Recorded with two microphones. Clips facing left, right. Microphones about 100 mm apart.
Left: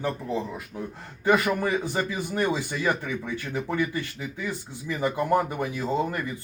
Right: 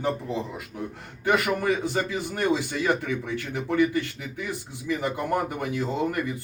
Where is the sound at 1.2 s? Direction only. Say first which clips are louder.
Left 1 dB; 20° left (ahead or behind).